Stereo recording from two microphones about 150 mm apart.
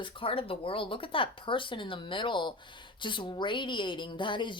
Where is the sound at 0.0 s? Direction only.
35° left (ahead or behind).